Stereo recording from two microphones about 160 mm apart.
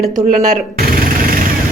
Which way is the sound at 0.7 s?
70° right (ahead or behind).